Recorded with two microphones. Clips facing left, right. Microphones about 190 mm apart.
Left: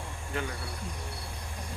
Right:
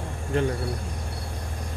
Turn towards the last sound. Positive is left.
turn(degrees=-35)  # may be behind; listen again after turning